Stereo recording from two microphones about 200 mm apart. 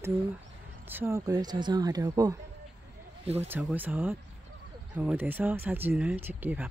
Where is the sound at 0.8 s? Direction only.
10° right (ahead or behind).